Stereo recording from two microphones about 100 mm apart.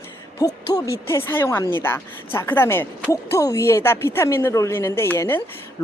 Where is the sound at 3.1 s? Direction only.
30° left (ahead or behind).